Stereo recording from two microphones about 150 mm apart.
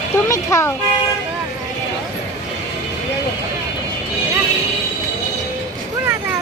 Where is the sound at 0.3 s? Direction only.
20° left (ahead or behind).